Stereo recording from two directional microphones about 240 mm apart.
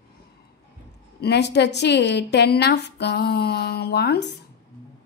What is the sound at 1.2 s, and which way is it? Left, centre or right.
A woman's voice, left.